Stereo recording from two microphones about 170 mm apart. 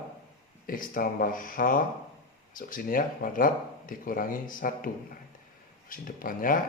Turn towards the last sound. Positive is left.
turn(degrees=55)  # may be behind; listen again after turning